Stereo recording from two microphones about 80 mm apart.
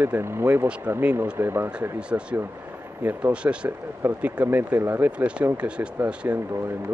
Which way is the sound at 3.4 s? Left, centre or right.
Right.